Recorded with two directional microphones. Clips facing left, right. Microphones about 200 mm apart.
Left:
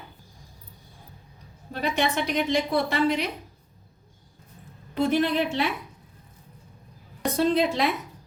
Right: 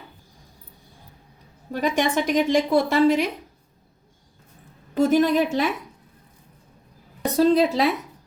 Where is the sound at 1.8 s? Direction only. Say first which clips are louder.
Right 4 dB; 50° right (ahead or behind).